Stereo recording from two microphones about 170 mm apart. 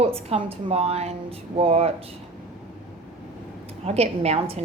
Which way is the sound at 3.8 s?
35° right (ahead or behind).